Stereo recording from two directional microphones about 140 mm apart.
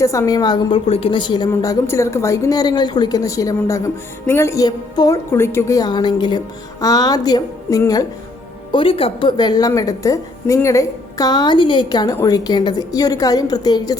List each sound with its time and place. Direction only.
0.0 s a woman's voice: 20° left (ahead or behind)
8.7 s a woman's voice: 40° left (ahead or behind)